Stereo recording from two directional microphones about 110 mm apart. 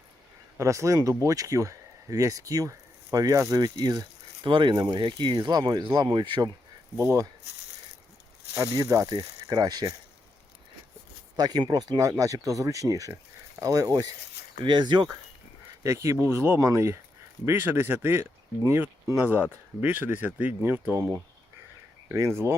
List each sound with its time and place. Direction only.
0.6 s speech: 25° right (ahead or behind)
6.9 s speech: 25° right (ahead or behind)
8.5 s speech: 30° right (ahead or behind)
11.3 s speech: 40° right (ahead or behind)
14.6 s speech: 45° right (ahead or behind)
15.8 s speech: 25° right (ahead or behind)